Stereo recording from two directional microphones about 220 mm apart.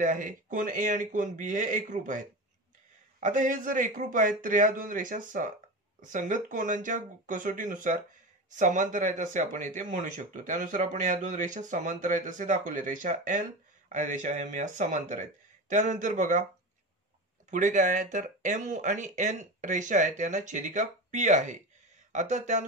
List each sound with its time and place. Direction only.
0.0 s speech: 35° right (ahead or behind)
17.5 s speech: 35° right (ahead or behind)